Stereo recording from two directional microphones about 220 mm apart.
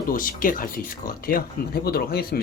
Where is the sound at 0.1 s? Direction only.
40° left (ahead or behind).